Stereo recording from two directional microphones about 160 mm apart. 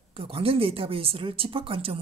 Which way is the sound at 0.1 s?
35° right (ahead or behind).